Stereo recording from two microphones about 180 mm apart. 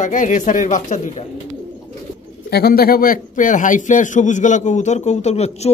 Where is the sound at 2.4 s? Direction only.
60° left (ahead or behind).